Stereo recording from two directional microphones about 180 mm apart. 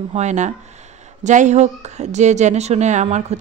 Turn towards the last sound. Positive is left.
turn(degrees=-40)  # may be behind; listen again after turning